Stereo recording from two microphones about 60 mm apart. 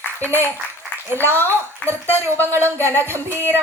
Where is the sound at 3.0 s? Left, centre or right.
Right.